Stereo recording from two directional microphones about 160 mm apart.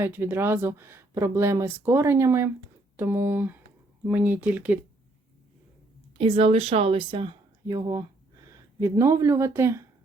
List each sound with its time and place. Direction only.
0.0 s speech: 15° right (ahead or behind)
6.1 s speech: 35° right (ahead or behind); by 9.8 s 15° right (ahead or behind)